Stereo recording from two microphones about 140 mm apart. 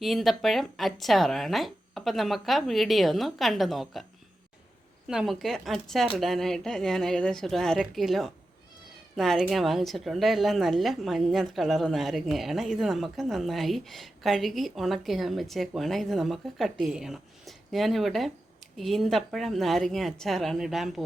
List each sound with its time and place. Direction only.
0.0 s speech: centre (ahead or behind)
5.0 s speech: centre (ahead or behind)